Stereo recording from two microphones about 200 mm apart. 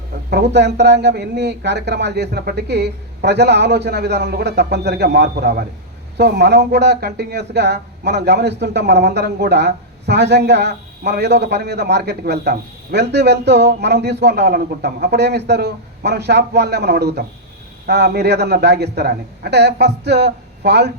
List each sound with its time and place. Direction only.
0.3 s speech: 55° right (ahead or behind)